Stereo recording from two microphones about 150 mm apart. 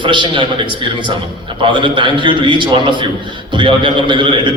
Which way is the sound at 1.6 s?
35° right (ahead or behind).